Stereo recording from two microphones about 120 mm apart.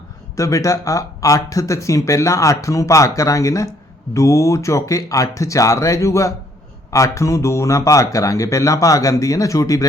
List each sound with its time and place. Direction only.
0.3 s speech: 25° left (ahead or behind)